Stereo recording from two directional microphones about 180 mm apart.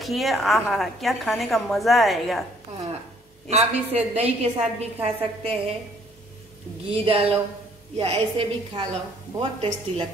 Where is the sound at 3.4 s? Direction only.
35° right (ahead or behind).